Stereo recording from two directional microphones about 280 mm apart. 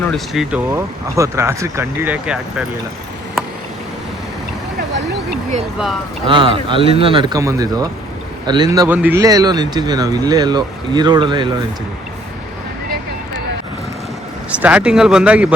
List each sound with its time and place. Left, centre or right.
0.0 s speech: centre
6.2 s speech: centre
14.5 s speech: centre